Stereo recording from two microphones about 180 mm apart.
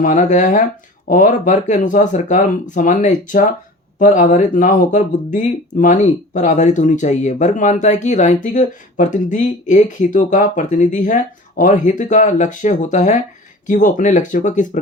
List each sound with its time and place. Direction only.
0.0 s speech: 45° left (ahead or behind)